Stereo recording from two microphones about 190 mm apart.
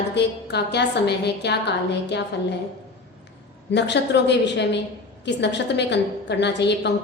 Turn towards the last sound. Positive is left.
turn(degrees=65)  # may be behind; listen again after turning